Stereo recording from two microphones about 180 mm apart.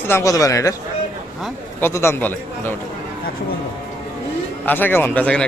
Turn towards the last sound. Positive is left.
turn(degrees=5)  # may be behind; listen again after turning